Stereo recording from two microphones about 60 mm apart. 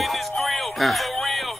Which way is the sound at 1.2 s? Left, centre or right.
Centre.